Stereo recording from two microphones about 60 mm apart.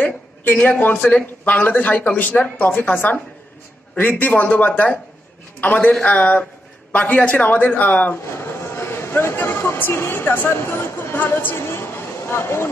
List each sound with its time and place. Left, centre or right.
0.6 s a man's voice: left
8.3 s speech: left
10.7 s speech: left